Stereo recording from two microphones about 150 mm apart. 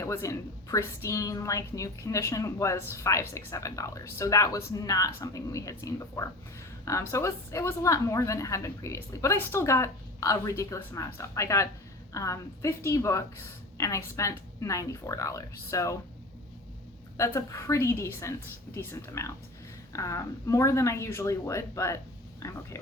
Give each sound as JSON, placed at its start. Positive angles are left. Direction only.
{"t": 0.0, "sound": "a woman's voice", "side_deg": 20}
{"t": 17.2, "sound": "a woman's voice", "side_deg": 20}